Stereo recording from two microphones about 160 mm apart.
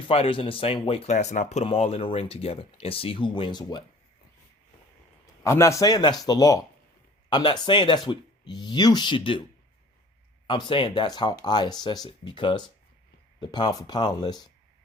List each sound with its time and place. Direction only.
0.1 s speech: 35° left (ahead or behind)
5.4 s speech: 20° left (ahead or behind)
10.4 s speech: 30° left (ahead or behind)